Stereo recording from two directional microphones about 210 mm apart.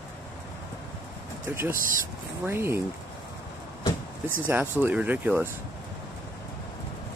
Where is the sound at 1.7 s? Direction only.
40° right (ahead or behind).